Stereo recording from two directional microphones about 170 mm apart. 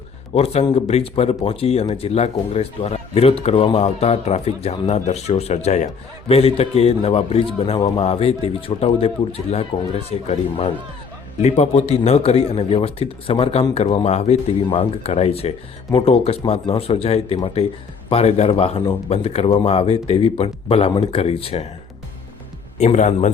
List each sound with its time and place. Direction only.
0.3 s speech: 35° left (ahead or behind)
22.8 s a man's voice: 40° left (ahead or behind)